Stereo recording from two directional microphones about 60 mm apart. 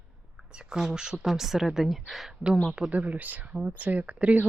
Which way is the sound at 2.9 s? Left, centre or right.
Right.